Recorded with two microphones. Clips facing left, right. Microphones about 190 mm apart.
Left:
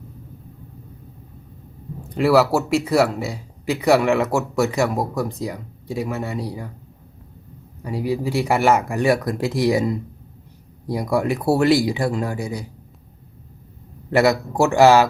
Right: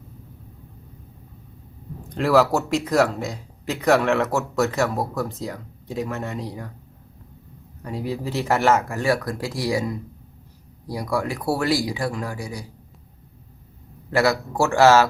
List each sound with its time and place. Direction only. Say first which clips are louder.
2.1 s speech: left 2 dB; 5° left (ahead or behind)
7.8 s speech: left 5 dB; 10° left (ahead or behind)
14.1 s speech: left 3 dB; 20° left (ahead or behind)